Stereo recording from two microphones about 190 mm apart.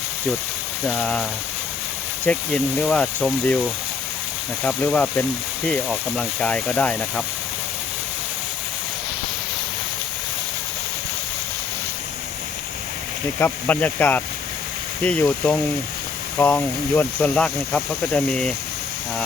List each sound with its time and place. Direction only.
0.9 s speech: 5° left (ahead or behind)
4.6 s speech: 5° left (ahead or behind)
13.4 s speech: 10° left (ahead or behind)